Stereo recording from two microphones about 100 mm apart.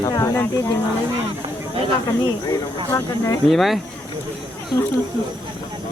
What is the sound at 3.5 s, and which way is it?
Speech, centre (ahead or behind).